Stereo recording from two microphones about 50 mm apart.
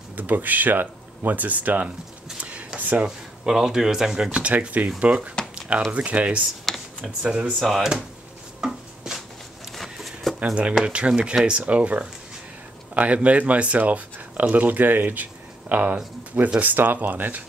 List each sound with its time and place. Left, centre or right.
0.1 s speech: right
2.4 s a sound: right
2.8 s speech: right
3.4 s speech: centre; by 7.5 s right
7.6 s speech: centre
8.5 s chopping: centre
9.9 s a sound: centre
10.4 s speech: right
16.7 s speech: right